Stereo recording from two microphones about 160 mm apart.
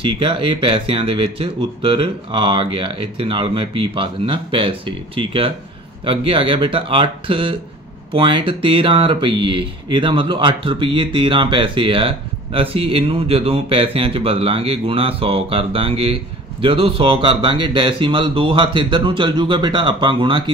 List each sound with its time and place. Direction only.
0.0 s speech: 35° right (ahead or behind)